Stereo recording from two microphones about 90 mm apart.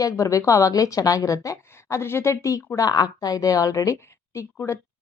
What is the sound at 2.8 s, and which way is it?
Speech, 45° left (ahead or behind).